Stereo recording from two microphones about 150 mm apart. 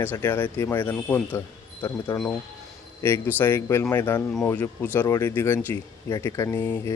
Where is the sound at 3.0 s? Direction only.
15° left (ahead or behind).